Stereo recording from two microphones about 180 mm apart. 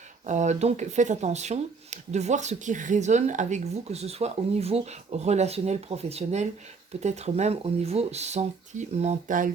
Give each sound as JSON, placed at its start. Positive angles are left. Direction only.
{"t": 0.3, "sound": "speech", "side_deg": -40}